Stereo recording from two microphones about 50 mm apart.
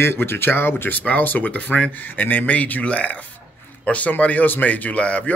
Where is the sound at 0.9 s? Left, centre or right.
Left.